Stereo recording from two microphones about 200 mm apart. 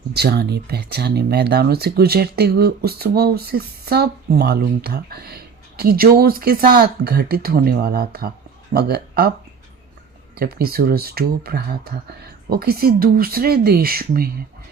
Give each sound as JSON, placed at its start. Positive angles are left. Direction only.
{"t": 0.1, "sound": "speech", "side_deg": -55}
{"t": 10.3, "sound": "speech", "side_deg": -50}